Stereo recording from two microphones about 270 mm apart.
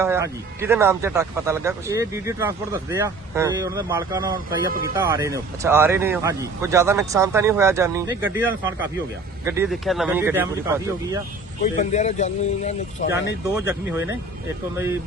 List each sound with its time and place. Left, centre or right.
0.0 s speech: centre
11.6 s speech: left